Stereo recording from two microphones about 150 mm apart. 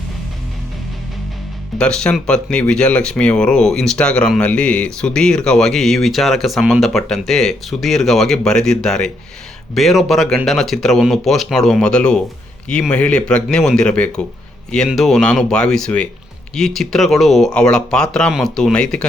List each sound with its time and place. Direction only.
1.8 s speech: 5° left (ahead or behind)